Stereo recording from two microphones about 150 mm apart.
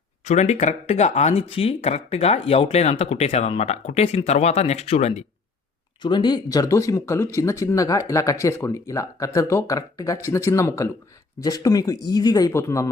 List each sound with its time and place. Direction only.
0.3 s speech: 50° left (ahead or behind)
6.0 s speech: 30° left (ahead or behind)